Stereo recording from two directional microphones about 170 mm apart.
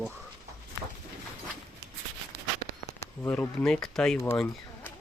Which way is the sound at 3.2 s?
10° left (ahead or behind).